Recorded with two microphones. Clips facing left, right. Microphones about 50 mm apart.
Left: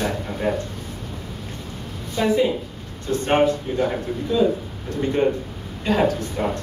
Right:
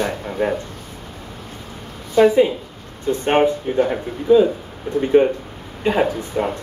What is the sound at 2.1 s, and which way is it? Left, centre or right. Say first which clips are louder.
Speech: right 6 dB; right.